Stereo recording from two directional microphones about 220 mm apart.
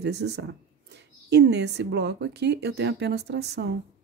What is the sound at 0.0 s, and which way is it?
Speech, 50° right (ahead or behind).